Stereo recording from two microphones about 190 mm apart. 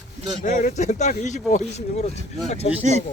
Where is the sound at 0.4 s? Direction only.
40° left (ahead or behind).